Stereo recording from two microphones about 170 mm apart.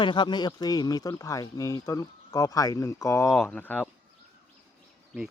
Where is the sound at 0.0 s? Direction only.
25° left (ahead or behind); by 3.8 s 10° left (ahead or behind).